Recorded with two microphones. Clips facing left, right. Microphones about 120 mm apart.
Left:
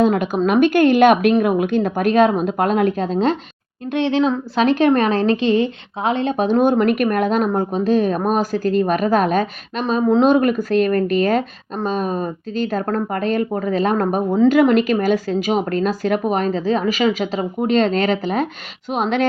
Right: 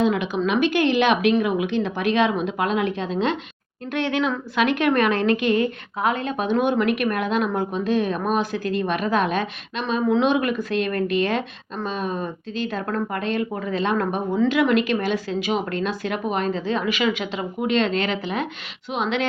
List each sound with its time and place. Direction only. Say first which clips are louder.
0.0 s a woman's voice: left 5 dB; 45° left (ahead or behind)
3.8 s a woman's voice: left 5 dB; 20° left (ahead or behind); by 19.2 s 45° left (ahead or behind)